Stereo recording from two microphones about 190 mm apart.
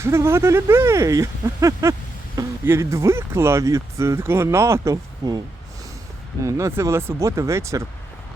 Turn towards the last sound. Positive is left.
turn(degrees=-15)  # may be behind; listen again after turning